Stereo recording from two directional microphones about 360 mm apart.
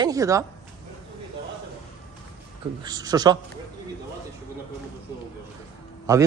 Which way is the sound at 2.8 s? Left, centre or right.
Centre.